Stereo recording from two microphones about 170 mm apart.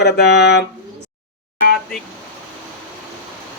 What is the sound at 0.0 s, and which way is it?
Speech, 80° left.